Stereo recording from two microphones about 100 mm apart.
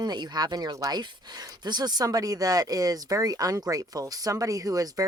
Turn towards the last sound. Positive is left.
turn(degrees=-35)  # may be behind; listen again after turning